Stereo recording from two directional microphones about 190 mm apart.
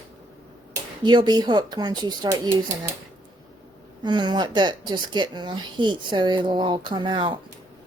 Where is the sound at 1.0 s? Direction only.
25° right (ahead or behind).